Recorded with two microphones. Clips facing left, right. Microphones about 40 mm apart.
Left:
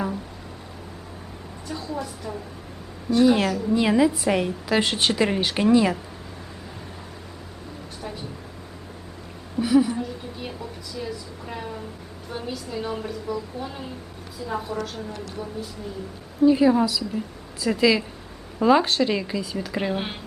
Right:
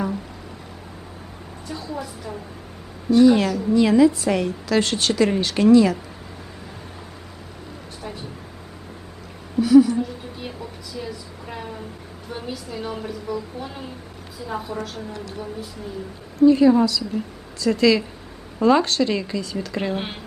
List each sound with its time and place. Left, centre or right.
1.6 s a woman's voice: centre
3.7 s a woman's voice: centre
9.6 s a woman's voice: centre
10.0 s a woman's voice: centre
16.4 s a woman's voice: centre